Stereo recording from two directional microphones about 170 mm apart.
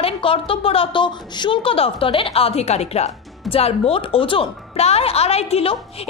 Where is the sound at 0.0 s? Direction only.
30° left (ahead or behind).